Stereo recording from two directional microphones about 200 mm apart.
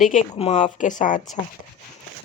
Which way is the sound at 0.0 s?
40° left (ahead or behind).